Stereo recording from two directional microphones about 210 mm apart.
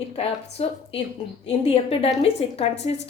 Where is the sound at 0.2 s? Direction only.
30° left (ahead or behind).